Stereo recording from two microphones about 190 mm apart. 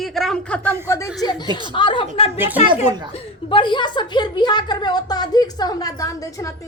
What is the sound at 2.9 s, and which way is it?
Speech, 25° right (ahead or behind).